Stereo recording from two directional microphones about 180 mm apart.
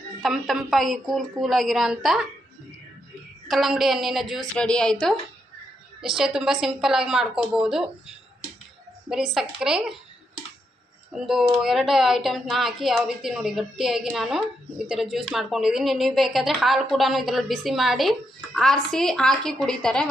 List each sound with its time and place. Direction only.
0.2 s a woman's voice: centre (ahead or behind)
3.4 s a woman's voice: centre (ahead or behind)
11.6 s a woman's voice: centre (ahead or behind)